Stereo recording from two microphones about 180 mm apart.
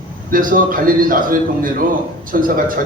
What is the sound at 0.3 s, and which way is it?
A man's voice, 50° right (ahead or behind).